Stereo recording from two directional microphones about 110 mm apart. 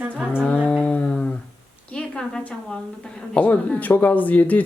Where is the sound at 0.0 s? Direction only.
15° right (ahead or behind).